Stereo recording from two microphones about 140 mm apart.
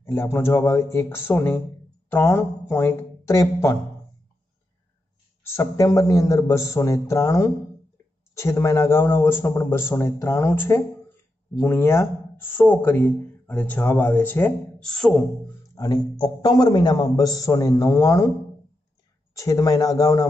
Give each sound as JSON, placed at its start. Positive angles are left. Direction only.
{"t": 0.0, "sound": "a woman's voice", "side_deg": 15}
{"t": 5.4, "sound": "a man's voice", "side_deg": 20}
{"t": 14.8, "sound": "speech", "side_deg": 5}
{"t": 15.7, "sound": "a man's voice", "side_deg": 30}
{"t": 19.3, "sound": "a man's voice", "side_deg": 25}